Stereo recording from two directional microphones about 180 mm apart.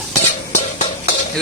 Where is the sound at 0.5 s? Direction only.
45° left (ahead or behind).